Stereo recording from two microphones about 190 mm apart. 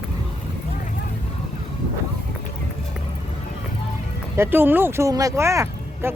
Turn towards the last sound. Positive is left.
turn(degrees=-15)  # may be behind; listen again after turning